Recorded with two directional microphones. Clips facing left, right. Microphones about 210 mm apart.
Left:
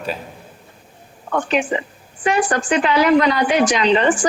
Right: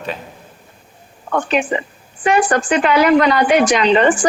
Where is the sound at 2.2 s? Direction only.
60° right (ahead or behind).